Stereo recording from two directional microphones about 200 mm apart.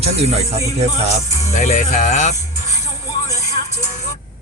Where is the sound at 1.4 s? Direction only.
35° left (ahead or behind).